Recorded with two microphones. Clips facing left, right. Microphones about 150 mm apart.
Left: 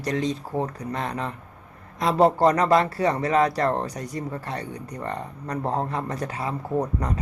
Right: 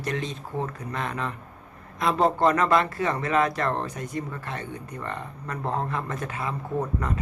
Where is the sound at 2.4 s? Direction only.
35° left (ahead or behind).